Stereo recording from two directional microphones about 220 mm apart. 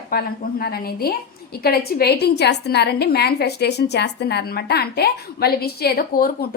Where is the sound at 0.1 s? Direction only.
40° left (ahead or behind).